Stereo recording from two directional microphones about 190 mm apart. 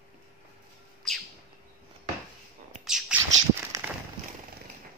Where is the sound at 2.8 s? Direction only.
5° right (ahead or behind).